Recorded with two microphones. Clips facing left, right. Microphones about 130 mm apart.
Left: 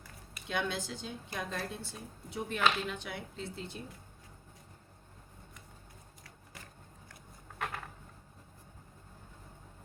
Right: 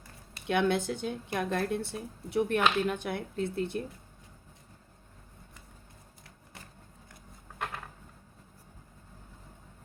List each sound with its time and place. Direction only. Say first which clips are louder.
0.4 s speech: right 8 dB; 60° right (ahead or behind)